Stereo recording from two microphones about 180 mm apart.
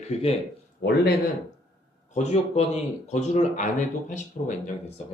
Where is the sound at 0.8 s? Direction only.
60° left (ahead or behind).